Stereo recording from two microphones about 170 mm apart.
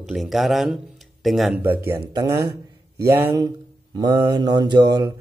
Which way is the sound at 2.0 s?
25° right (ahead or behind).